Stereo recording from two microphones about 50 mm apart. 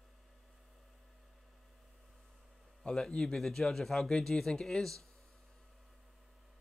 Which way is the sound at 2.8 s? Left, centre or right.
Centre.